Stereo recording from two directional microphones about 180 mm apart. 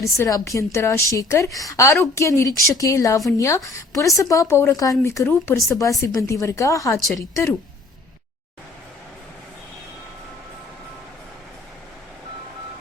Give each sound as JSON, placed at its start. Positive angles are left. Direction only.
{"t": 0.0, "sound": "a woman's voice", "side_deg": 20}